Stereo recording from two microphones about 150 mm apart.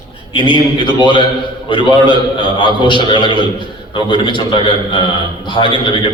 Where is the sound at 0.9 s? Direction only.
30° left (ahead or behind).